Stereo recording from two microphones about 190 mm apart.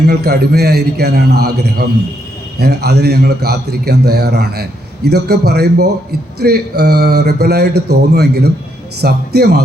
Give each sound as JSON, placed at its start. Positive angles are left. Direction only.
{"t": 0.1, "sound": "a man's voice", "side_deg": -55}